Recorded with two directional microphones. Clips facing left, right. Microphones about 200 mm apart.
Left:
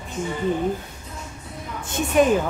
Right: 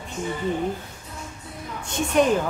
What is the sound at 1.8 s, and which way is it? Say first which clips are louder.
Speech: left 2 dB; 5° left (ahead or behind).